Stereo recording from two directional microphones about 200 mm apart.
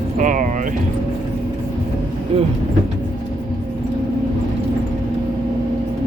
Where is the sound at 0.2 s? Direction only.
40° right (ahead or behind).